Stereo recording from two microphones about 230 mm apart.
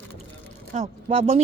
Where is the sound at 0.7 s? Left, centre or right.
Right.